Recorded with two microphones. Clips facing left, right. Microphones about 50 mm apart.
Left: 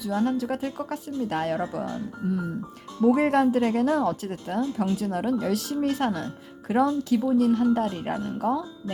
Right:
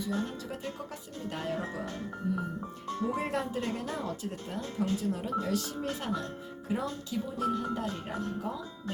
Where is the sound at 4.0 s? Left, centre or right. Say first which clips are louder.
Left 10 dB; left.